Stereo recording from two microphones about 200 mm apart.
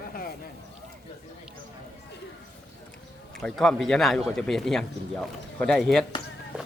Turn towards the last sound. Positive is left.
turn(degrees=0)  # may be behind; listen again after turning